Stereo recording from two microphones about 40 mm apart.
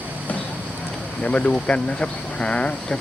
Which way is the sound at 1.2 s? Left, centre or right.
Left.